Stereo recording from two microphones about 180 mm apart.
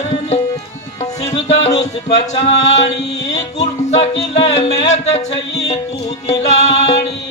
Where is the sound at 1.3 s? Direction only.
35° left (ahead or behind).